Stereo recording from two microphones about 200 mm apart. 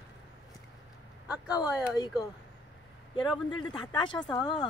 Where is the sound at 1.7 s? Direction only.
20° left (ahead or behind).